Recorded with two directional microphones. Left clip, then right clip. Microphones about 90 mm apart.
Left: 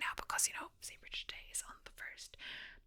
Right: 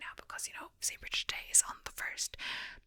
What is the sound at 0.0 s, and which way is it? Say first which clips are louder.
Whispering: left 6 dB; 20° left (ahead or behind).